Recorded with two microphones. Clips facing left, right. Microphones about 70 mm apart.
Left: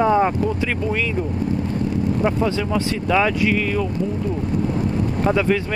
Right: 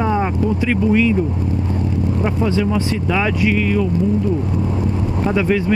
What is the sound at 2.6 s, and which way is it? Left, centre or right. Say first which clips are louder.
Speech: right 3 dB; centre.